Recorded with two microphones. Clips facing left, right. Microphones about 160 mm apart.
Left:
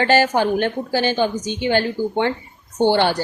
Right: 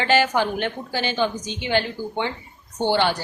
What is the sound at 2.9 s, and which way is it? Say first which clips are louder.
Speech: left 3 dB; 50° left (ahead or behind).